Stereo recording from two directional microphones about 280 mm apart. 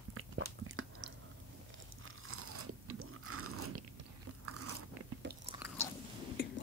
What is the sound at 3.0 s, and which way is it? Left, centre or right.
Biting, right.